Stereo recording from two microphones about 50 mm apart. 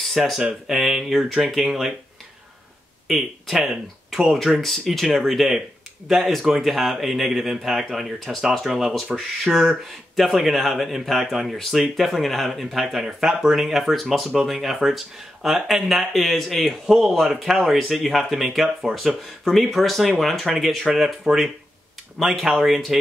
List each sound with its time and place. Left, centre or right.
0.0 s a sound: centre
0.4 s speech: centre
0.7 s speech: centre
3.1 s speech: centre